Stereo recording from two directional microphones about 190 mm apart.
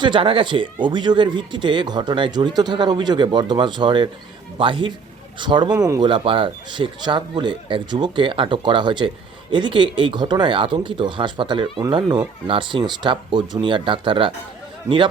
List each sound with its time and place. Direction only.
0.0 s speech: 25° right (ahead or behind)